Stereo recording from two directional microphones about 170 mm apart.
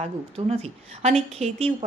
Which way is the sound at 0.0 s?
35° right (ahead or behind).